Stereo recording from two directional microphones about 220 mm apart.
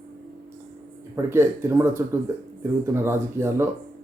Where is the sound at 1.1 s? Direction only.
10° right (ahead or behind).